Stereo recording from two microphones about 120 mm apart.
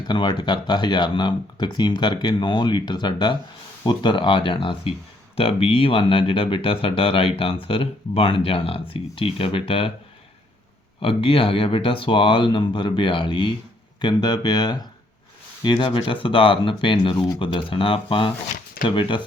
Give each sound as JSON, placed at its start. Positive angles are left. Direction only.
{"t": 0.1, "sound": "speech", "side_deg": 40}
{"t": 11.0, "sound": "speech", "side_deg": 50}